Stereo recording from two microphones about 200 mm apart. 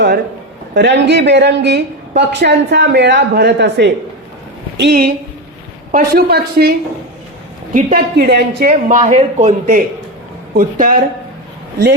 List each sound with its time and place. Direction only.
0.7 s a woman's voice: 60° right (ahead or behind)
4.8 s speech: 50° right (ahead or behind)